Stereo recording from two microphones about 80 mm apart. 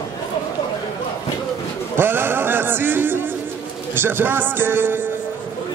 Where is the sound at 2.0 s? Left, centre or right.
Right.